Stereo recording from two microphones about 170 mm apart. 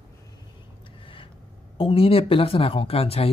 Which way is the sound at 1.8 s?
35° left (ahead or behind).